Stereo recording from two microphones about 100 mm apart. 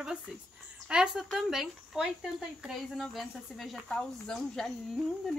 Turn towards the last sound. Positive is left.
turn(degrees=5)  # may be behind; listen again after turning